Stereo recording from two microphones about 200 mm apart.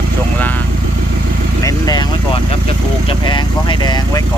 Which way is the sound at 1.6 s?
20° left (ahead or behind).